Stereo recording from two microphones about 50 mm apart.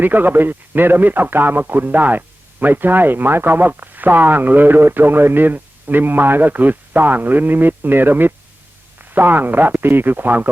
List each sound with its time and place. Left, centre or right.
0.0 s speech: right